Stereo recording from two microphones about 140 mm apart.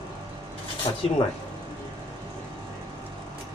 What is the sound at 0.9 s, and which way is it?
Speech, 40° left (ahead or behind).